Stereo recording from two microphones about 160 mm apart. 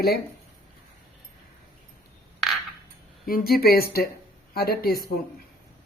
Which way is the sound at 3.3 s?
65° left (ahead or behind).